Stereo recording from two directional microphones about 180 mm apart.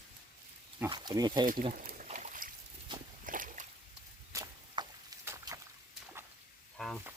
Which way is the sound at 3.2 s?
50° right (ahead or behind).